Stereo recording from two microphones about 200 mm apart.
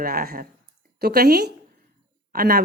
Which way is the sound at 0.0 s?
50° right (ahead or behind).